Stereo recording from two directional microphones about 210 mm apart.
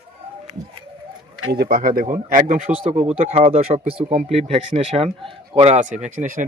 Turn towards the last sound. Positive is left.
turn(degrees=-35)  # may be behind; listen again after turning